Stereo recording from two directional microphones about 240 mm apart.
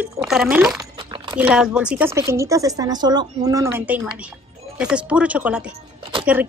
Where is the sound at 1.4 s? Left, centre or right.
Centre.